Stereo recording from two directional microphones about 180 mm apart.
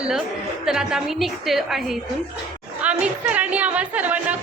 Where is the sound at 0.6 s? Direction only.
5° right (ahead or behind).